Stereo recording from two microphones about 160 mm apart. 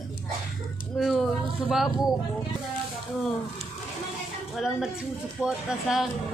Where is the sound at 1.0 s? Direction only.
Centre (ahead or behind).